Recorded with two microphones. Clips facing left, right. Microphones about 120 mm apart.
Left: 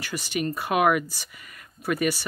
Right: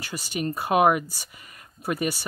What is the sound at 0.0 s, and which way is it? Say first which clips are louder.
Speech: left 1 dB; 35° right (ahead or behind).